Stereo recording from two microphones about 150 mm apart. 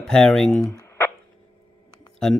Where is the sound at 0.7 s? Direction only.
20° left (ahead or behind).